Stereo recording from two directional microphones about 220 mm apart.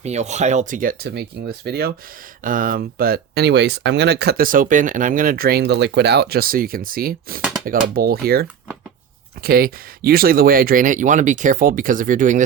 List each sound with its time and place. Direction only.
0.0 s speech: 30° right (ahead or behind)